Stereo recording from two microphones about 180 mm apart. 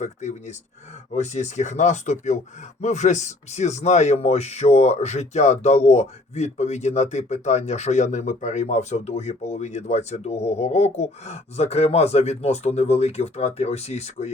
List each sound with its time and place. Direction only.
0.0 s speech: 40° left (ahead or behind)